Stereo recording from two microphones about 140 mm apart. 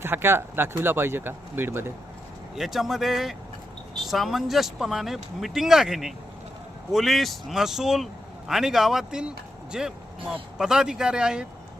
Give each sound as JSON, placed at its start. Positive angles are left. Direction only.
{"t": 0.0, "sound": "speech", "side_deg": -15}
{"t": 2.6, "sound": "speech", "side_deg": 0}